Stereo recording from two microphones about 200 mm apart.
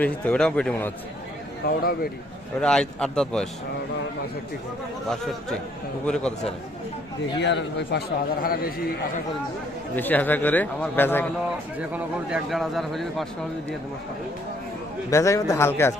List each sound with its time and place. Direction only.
0.0 s a man's voice: 5° left (ahead or behind)
1.6 s a man's voice: 50° left (ahead or behind)
2.6 s speech: 5° left (ahead or behind)
7.3 s speech: 60° left (ahead or behind)
9.9 s a man's voice: 10° left (ahead or behind)
11.8 s speech: 5° right (ahead or behind)
15.1 s a man's voice: 15° left (ahead or behind)